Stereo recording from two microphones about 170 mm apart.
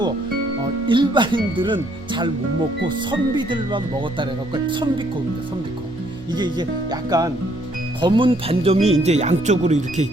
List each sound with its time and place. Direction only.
0.9 s speech: 30° right (ahead or behind)
6.3 s speech: 25° right (ahead or behind); by 10.1 s 45° right (ahead or behind)